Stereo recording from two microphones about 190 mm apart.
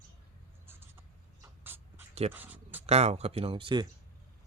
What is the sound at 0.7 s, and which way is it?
Writing, 10° right (ahead or behind).